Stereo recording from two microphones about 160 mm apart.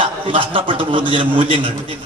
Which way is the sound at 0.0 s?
35° right (ahead or behind).